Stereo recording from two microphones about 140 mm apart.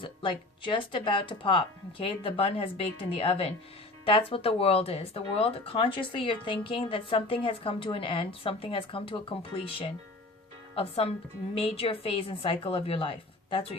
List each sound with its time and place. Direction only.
0.0 s a woman's voice: 35° left (ahead or behind)